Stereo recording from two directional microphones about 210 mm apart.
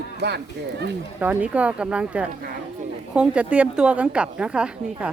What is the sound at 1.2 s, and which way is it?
A woman's voice, 5° right (ahead or behind).